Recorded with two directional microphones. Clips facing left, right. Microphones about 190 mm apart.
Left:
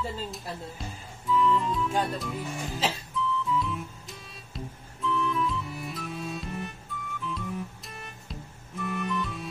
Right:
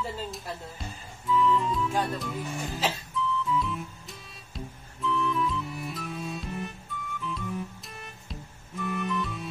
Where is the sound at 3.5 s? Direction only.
Centre (ahead or behind).